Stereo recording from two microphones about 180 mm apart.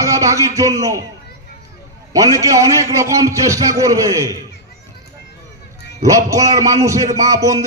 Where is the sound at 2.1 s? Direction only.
15° right (ahead or behind).